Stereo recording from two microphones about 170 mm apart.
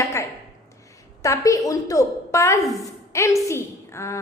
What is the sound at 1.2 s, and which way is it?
A woman's voice, 20° left (ahead or behind).